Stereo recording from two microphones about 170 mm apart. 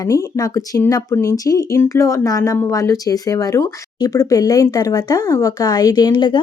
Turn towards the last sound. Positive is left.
turn(degrees=25)  # may be behind; listen again after turning